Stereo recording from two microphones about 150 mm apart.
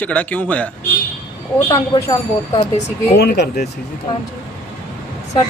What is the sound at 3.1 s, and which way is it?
Speech, 90° left.